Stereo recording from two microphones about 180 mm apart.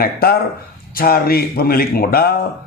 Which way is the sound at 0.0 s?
60° left (ahead or behind).